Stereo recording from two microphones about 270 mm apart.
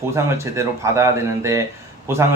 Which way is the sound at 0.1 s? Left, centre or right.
Centre.